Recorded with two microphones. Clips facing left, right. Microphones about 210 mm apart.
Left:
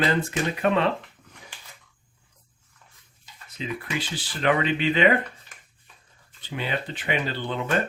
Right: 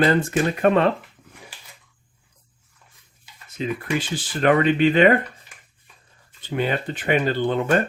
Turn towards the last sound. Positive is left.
turn(degrees=-50)  # may be behind; listen again after turning